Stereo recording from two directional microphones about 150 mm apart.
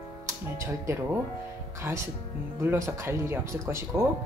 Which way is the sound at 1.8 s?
20° right (ahead or behind).